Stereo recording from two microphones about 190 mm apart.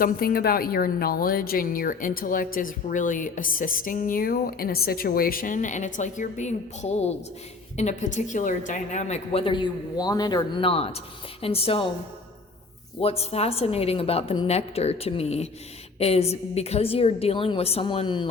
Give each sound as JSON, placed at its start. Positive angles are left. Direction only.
{"t": 0.0, "sound": "a woman's voice", "side_deg": 50}
{"t": 13.0, "sound": "a woman's voice", "side_deg": 30}